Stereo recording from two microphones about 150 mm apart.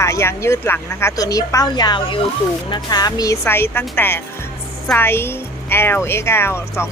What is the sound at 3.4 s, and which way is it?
Speech, 15° left (ahead or behind).